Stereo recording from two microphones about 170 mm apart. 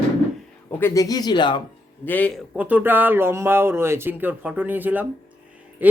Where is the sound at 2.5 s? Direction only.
10° right (ahead or behind).